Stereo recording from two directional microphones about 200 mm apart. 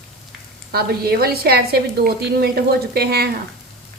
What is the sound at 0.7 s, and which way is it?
A woman's voice, 50° right (ahead or behind).